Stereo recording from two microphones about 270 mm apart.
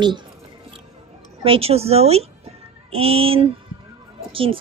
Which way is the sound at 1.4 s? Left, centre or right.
Right.